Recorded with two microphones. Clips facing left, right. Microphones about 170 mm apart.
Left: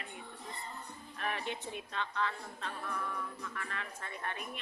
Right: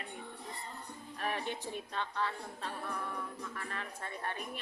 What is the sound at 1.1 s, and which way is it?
Speech, 40° right (ahead or behind).